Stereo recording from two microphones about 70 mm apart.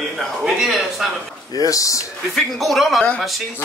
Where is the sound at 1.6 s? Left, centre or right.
Left.